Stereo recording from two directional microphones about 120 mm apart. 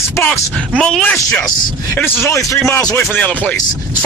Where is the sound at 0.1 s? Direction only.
15° left (ahead or behind).